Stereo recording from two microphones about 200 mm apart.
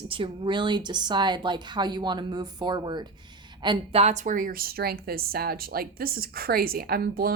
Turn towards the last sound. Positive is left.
turn(degrees=-50)  # may be behind; listen again after turning